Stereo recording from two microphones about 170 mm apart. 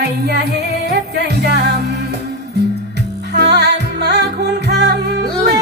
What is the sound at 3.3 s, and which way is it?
Music, 75° right (ahead or behind).